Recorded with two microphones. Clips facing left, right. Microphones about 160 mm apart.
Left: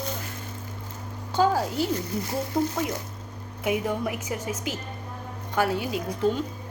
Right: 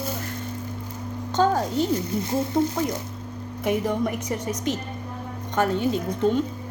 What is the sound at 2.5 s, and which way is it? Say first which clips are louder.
Speech: right 2 dB; 25° right (ahead or behind).